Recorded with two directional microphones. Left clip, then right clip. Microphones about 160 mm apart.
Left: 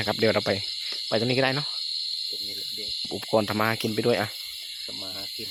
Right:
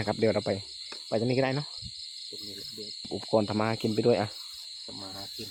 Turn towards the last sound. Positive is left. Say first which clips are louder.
# left 1 dB
turn(degrees=-15)  # may be behind; listen again after turning